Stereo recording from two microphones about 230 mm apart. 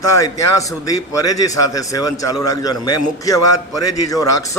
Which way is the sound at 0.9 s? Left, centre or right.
Left.